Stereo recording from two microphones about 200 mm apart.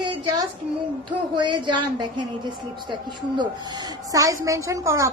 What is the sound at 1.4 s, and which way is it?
Speech, 25° right (ahead or behind).